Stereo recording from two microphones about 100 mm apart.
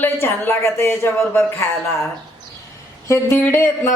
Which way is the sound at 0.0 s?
20° left (ahead or behind).